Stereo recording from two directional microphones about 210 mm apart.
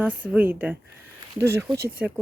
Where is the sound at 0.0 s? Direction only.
5° right (ahead or behind).